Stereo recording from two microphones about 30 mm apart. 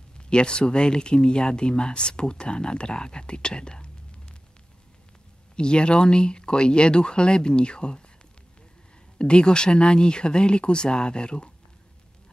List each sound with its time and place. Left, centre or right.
0.3 s speech: left
5.6 s speech: left
9.2 s speech: left